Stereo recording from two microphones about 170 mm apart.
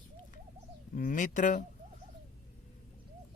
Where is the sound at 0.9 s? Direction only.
50° left (ahead or behind).